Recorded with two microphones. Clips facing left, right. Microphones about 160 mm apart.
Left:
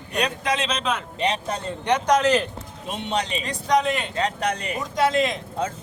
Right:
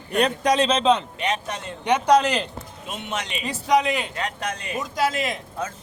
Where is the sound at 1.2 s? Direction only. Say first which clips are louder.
Left 2 dB; 35° left (ahead or behind).